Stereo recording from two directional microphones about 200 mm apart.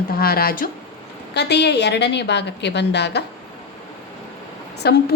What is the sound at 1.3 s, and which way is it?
A woman's voice, 55° left (ahead or behind).